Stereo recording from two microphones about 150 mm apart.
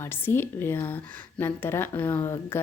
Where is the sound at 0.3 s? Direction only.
15° left (ahead or behind).